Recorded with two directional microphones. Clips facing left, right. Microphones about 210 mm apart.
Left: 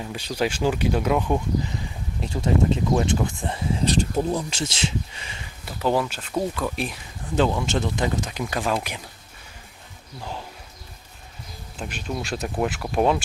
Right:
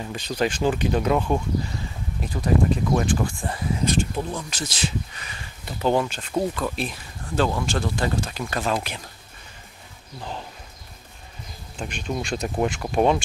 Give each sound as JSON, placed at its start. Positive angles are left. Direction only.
{"t": 0.0, "sound": "speech", "side_deg": 10}
{"t": 2.2, "sound": "speech", "side_deg": 25}
{"t": 3.8, "sound": "speech", "side_deg": 35}
{"t": 5.7, "sound": "speech", "side_deg": 5}
{"t": 11.8, "sound": "speech", "side_deg": 0}